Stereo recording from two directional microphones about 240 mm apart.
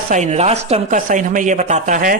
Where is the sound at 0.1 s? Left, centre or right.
Right.